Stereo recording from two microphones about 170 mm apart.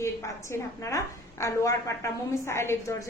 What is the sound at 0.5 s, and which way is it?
A woman's voice, 20° left (ahead or behind).